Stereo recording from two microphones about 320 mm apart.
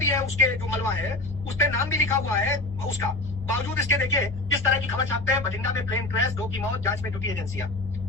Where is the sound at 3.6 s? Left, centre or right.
Centre.